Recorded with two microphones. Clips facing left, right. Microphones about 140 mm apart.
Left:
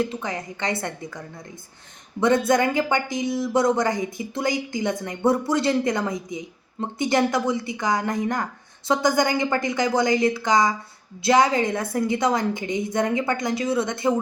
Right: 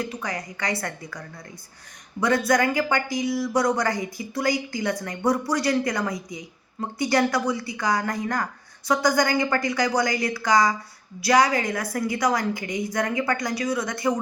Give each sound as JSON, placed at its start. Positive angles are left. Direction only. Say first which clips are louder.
{"t": 0.0, "sound": "a woman's voice", "louder": "left 4 dB", "side_deg": 25}
{"t": 2.2, "sound": "a woman's voice", "louder": "left 2 dB", "side_deg": 25}